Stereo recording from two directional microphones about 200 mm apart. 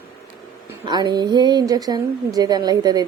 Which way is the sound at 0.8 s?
20° right (ahead or behind).